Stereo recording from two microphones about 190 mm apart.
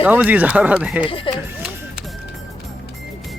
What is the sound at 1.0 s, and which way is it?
Speech, 25° left (ahead or behind).